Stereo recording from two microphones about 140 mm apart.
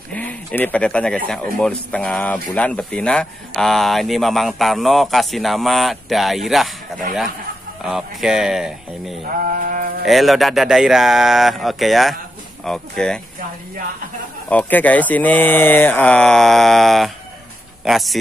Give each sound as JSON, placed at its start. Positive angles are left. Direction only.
{"t": 0.1, "sound": "speech", "side_deg": 10}
{"t": 7.8, "sound": "speech", "side_deg": -5}
{"t": 9.4, "sound": "sheep", "side_deg": -85}
{"t": 10.0, "sound": "speech", "side_deg": 0}
{"t": 14.5, "sound": "speech", "side_deg": 10}